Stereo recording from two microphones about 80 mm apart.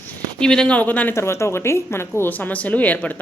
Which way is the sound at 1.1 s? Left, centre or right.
Left.